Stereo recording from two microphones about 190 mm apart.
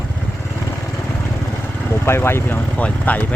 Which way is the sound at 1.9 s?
15° left (ahead or behind).